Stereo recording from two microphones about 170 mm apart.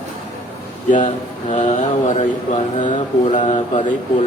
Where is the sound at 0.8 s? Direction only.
45° left (ahead or behind).